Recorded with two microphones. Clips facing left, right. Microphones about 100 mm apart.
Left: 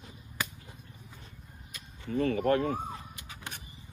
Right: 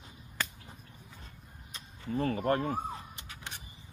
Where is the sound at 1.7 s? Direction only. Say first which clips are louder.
Even; 35° right (ahead or behind).